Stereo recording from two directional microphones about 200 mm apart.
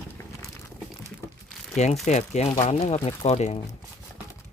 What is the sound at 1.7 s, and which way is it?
Speech, 35° left (ahead or behind).